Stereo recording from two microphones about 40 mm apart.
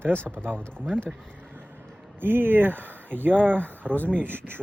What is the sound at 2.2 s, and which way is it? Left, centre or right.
Speech, right.